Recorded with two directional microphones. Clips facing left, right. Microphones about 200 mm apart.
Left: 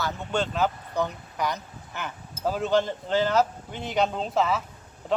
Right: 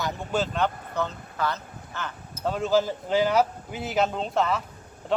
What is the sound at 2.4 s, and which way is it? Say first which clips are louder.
Speech: right 1 dB; centre (ahead or behind).